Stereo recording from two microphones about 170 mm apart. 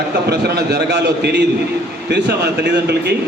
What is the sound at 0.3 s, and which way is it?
A man's voice, 75° right (ahead or behind).